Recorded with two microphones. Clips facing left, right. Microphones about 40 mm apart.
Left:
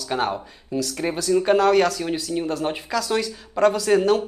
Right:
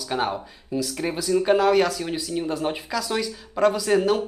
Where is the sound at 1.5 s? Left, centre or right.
Centre.